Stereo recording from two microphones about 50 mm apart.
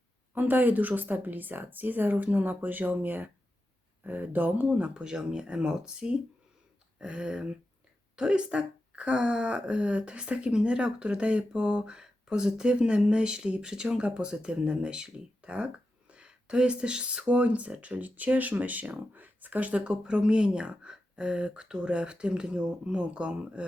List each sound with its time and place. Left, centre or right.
0.3 s speech: right
4.8 s speech: centre